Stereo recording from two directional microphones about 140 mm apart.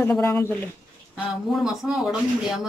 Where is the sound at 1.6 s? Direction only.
5° right (ahead or behind).